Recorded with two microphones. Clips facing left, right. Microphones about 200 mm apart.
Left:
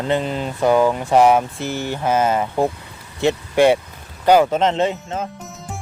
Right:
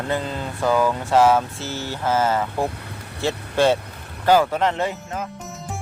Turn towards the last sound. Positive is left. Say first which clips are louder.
# left 5 dB
turn(degrees=25)  # may be behind; listen again after turning